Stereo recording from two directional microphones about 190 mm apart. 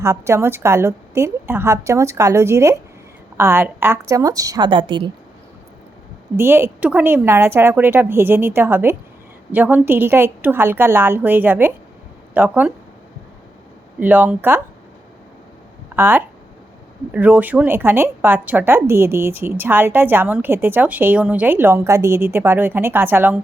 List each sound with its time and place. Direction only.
0.0 s speech: 15° right (ahead or behind)
6.3 s speech: 10° right (ahead or behind)
14.0 s speech: 10° right (ahead or behind)
16.0 s speech: 10° right (ahead or behind)